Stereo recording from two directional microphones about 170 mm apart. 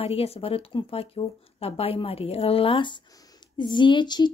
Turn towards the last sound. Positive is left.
turn(degrees=25)  # may be behind; listen again after turning